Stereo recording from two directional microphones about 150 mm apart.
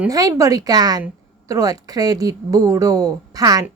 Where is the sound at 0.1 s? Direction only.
25° right (ahead or behind).